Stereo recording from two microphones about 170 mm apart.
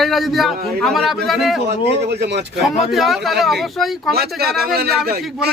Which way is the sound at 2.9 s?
Centre (ahead or behind).